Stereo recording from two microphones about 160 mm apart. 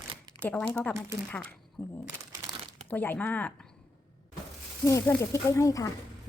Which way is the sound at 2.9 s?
10° left (ahead or behind).